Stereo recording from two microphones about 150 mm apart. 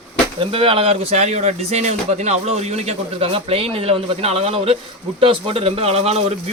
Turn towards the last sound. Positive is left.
turn(degrees=-45)  # may be behind; listen again after turning